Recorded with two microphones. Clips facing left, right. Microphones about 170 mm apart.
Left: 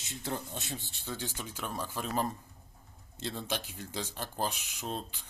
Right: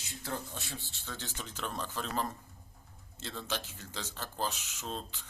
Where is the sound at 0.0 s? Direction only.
20° left (ahead or behind).